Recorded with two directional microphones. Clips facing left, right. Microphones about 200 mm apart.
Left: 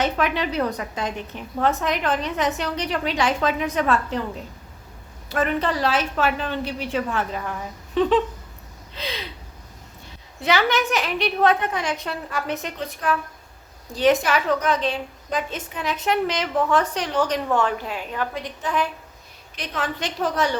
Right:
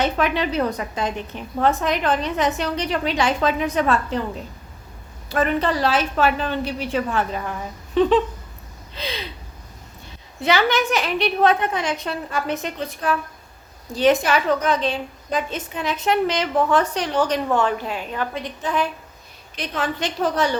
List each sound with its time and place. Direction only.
0.0 s a woman's voice: 30° right (ahead or behind)
5.3 s a woman's voice: 35° right (ahead or behind)
10.4 s a woman's voice: 30° right (ahead or behind)